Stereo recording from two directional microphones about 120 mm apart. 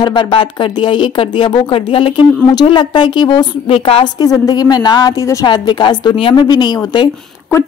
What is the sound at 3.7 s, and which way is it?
Speech, 50° left (ahead or behind).